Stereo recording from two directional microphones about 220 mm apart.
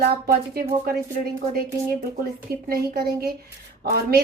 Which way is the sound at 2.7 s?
45° right (ahead or behind).